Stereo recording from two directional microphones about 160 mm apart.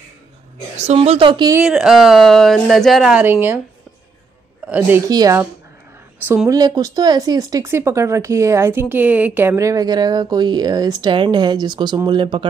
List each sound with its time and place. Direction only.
0.7 s a woman's voice: 40° right (ahead or behind)
1.6 s speech: 5° right (ahead or behind)
4.6 s a woman's voice: 10° right (ahead or behind)
5.1 s a woman's voice: 25° right (ahead or behind)